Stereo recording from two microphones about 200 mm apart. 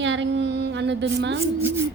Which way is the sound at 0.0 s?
65° right (ahead or behind).